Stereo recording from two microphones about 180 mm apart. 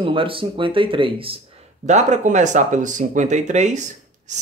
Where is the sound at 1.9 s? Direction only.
40° right (ahead or behind).